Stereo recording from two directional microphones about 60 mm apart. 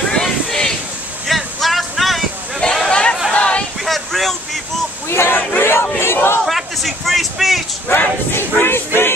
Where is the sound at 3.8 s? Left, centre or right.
Centre.